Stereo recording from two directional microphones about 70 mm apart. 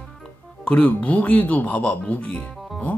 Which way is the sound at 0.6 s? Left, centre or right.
Left.